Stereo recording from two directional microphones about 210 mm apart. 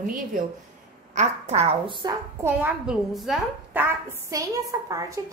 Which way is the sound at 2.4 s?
5° right (ahead or behind).